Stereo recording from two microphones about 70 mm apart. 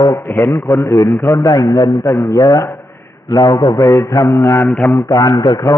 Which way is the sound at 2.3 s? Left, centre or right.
Left.